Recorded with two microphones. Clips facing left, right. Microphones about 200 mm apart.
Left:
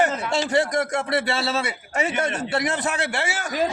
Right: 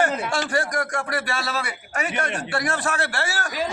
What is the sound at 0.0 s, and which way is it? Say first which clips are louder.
A man's voice: left 1 dB; 20° left (ahead or behind).